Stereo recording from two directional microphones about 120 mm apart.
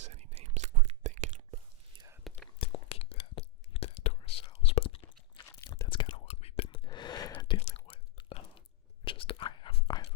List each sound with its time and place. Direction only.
0.0 s whispering: 65° right (ahead or behind)
2.3 s whispering: centre (ahead or behind)
2.6 s whispering: 55° left (ahead or behind)
5.4 s crunch: 25° left (ahead or behind)
5.9 s whispering: 45° left (ahead or behind)
6.2 s whispering: 55° left (ahead or behind); by 7.3 s 35° left (ahead or behind)
7.9 s whispering: 55° left (ahead or behind)
8.3 s chewing: 50° left (ahead or behind)
9.0 s whispering: 45° left (ahead or behind)